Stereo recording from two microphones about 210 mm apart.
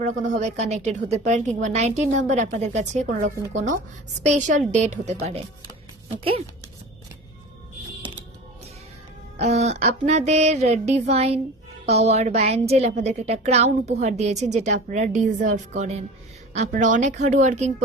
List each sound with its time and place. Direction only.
0.0 s a woman's voice: 35° right (ahead or behind)
8.0 s music: 25° right (ahead or behind)
9.4 s a woman's voice: 30° right (ahead or behind)